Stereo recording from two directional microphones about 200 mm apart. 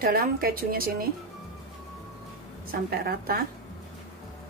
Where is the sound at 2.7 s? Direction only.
50° right (ahead or behind).